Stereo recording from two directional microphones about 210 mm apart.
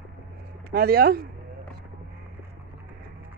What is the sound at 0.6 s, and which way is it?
Speech, 45° right (ahead or behind).